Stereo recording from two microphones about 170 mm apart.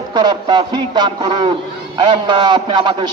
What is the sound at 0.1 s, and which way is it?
A man's voice, 25° right (ahead or behind).